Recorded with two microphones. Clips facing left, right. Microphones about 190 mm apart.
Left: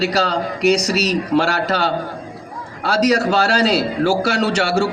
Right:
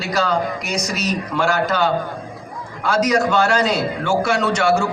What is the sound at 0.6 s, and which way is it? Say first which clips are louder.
Speech: left 10 dB; 70° left (ahead or behind).